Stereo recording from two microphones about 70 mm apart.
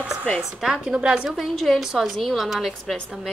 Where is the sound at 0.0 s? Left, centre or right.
Centre.